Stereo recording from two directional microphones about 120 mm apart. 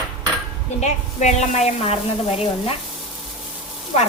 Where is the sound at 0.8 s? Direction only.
70° left (ahead or behind).